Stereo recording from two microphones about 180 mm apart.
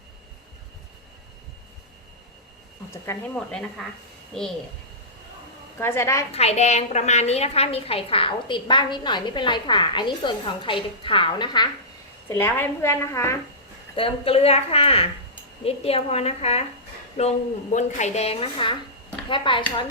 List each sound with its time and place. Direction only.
2.9 s a woman's voice: 10° left (ahead or behind)
5.8 s a woman's voice: 15° left (ahead or behind)
6.3 s a woman's voice: 35° left (ahead or behind)
12.3 s a woman's voice: 10° left (ahead or behind)
13.9 s a woman's voice: 30° left (ahead or behind)